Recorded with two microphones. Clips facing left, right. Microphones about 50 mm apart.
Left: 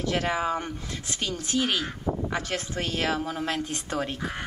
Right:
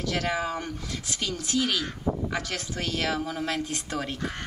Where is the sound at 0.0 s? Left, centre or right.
Left.